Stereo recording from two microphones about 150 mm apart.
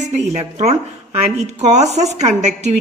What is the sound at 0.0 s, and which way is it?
Speech, 50° right (ahead or behind).